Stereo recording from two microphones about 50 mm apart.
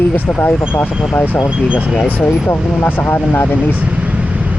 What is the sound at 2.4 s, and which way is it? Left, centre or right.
Speech, left.